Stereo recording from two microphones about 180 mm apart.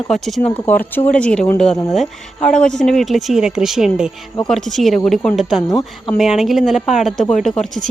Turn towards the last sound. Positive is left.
turn(degrees=0)  # may be behind; listen again after turning